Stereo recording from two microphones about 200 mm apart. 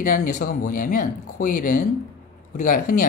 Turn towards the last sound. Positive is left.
turn(degrees=40)  # may be behind; listen again after turning